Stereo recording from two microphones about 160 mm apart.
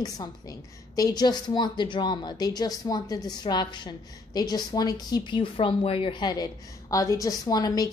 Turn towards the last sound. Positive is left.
turn(degrees=25)  # may be behind; listen again after turning